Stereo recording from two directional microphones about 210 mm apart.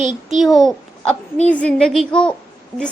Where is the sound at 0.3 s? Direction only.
Centre (ahead or behind).